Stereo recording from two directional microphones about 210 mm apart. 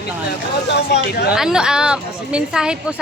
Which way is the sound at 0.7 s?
50° left (ahead or behind).